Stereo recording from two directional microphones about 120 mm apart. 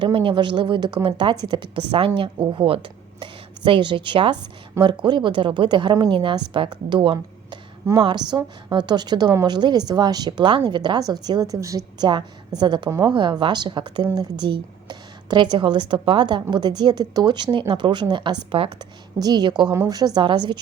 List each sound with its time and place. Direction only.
0.0 s a woman's voice: 45° right (ahead or behind)